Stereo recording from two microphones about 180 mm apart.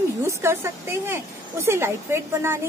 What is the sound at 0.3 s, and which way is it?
Speech, 15° right (ahead or behind).